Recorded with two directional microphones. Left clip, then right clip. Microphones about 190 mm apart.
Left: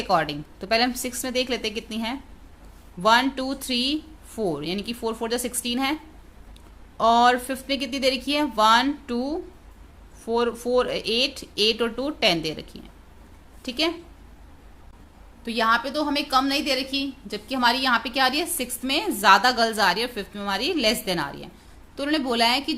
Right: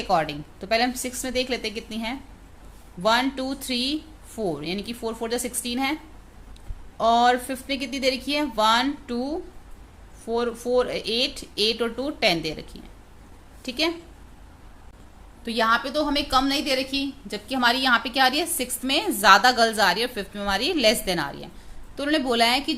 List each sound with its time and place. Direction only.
0.1 s a woman's voice: 15° left (ahead or behind)
15.4 s a woman's voice: centre (ahead or behind)